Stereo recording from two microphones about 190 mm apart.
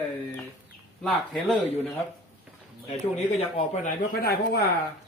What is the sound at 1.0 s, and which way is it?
Speech, centre (ahead or behind).